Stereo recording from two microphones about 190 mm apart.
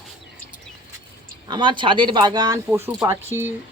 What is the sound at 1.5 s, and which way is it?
Speech, 25° right (ahead or behind).